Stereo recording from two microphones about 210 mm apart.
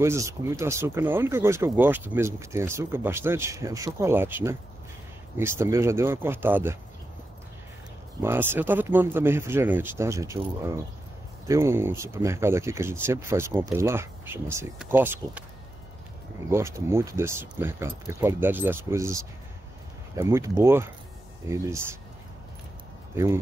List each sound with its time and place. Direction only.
0.0 s speech: 15° right (ahead or behind)
8.2 s speech: 10° right (ahead or behind)
11.4 s speech: 15° right (ahead or behind)
16.4 s speech: 15° right (ahead or behind)
23.1 s speech: 15° right (ahead or behind)